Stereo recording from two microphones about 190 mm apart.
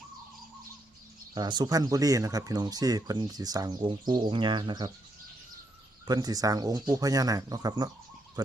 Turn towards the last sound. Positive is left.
turn(degrees=-20)  # may be behind; listen again after turning